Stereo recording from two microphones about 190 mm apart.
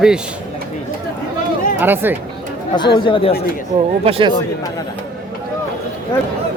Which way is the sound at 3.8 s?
30° right (ahead or behind).